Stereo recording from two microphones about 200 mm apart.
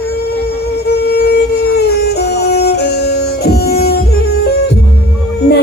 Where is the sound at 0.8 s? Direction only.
55° left (ahead or behind).